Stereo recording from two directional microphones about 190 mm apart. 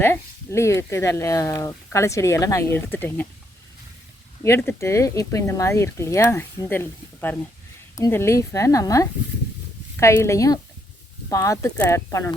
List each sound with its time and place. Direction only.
0.0 s speech: 15° left (ahead or behind)
4.4 s speech: 15° left (ahead or behind)